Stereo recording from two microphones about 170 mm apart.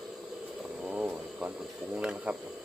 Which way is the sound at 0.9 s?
5° right (ahead or behind).